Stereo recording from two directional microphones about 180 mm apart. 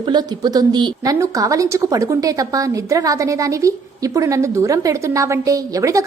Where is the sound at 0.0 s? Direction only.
25° right (ahead or behind).